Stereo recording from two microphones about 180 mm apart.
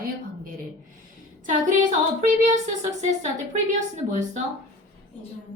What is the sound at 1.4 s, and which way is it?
Child singing, 45° right (ahead or behind).